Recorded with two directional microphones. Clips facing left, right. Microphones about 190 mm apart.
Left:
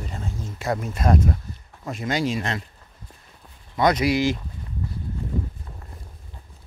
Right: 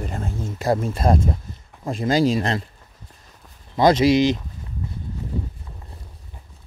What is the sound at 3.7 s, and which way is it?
Speech, 25° right (ahead or behind).